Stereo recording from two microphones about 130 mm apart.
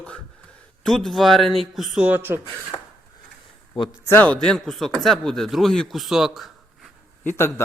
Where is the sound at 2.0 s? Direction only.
15° right (ahead or behind).